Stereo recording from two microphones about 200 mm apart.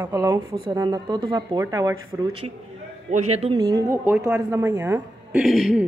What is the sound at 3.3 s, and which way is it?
Speech, 30° right (ahead or behind).